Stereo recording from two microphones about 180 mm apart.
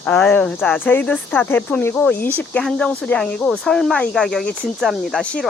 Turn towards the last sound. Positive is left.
turn(degrees=5)  # may be behind; listen again after turning